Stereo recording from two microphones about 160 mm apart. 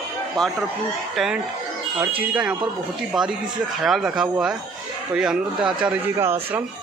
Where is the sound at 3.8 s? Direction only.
5° right (ahead or behind).